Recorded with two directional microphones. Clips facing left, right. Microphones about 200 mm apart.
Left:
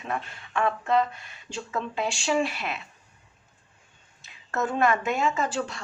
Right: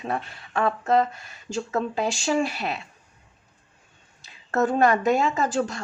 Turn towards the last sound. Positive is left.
turn(degrees=-40)  # may be behind; listen again after turning